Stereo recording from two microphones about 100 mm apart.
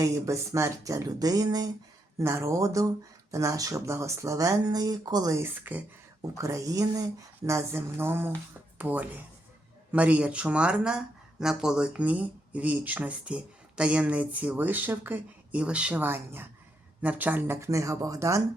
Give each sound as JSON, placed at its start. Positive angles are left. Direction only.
{"t": 0.0, "sound": "speech", "side_deg": -30}
{"t": 2.1, "sound": "speech", "side_deg": -30}
{"t": 5.4, "sound": "speech", "side_deg": -15}
{"t": 6.3, "sound": "speech", "side_deg": -30}